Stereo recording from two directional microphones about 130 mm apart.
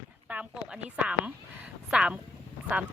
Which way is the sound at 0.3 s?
10° right (ahead or behind).